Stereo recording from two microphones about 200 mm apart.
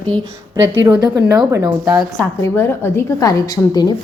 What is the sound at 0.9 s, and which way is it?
Speech, 20° right (ahead or behind).